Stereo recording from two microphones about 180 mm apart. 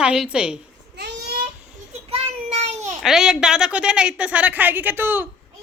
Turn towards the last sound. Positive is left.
turn(degrees=-10)  # may be behind; listen again after turning